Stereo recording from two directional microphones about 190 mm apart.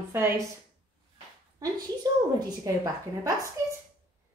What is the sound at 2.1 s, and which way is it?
A woman's voice, 20° right (ahead or behind).